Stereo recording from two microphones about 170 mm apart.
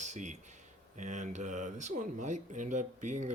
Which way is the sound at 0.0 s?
45° right (ahead or behind).